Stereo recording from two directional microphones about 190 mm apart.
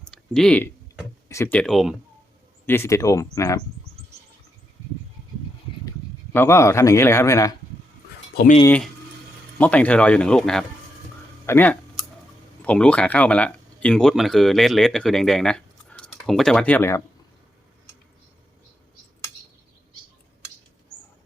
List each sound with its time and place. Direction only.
0.0 s a sound: 5° left (ahead or behind)
2.6 s a man's voice: 15° left (ahead or behind)
6.3 s a man's voice: 15° left (ahead or behind)
8.6 s a man's voice: 10° left (ahead or behind)
11.4 s a sound: 10° left (ahead or behind)
12.6 s speech: 5° left (ahead or behind)